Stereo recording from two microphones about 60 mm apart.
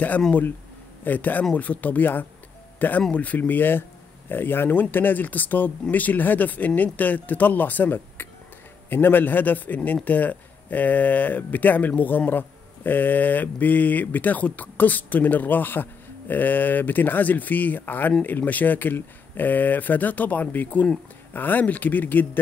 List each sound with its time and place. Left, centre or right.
1.0 s speech: left